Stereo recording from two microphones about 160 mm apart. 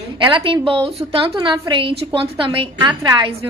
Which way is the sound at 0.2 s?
30° right (ahead or behind).